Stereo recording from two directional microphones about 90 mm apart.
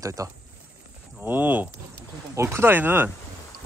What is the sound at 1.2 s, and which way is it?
Speech, 20° right (ahead or behind).